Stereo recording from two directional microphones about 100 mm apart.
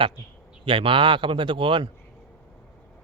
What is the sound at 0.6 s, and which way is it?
Speech, 60° right (ahead or behind).